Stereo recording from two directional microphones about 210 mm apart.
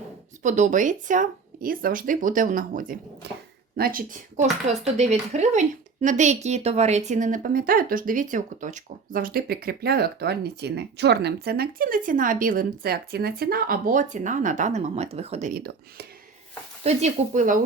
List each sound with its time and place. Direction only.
0.4 s speech: 35° right (ahead or behind)
3.2 s speech: 55° right (ahead or behind)
16.8 s speech: 35° right (ahead or behind)